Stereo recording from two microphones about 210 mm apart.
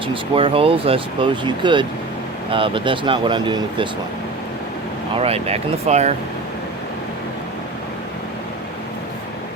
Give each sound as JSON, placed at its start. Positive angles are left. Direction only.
{"t": 0.1, "sound": "speech", "side_deg": -25}
{"t": 5.2, "sound": "speech", "side_deg": -30}